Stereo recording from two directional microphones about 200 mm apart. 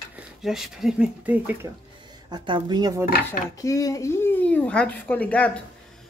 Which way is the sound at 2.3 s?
20° right (ahead or behind).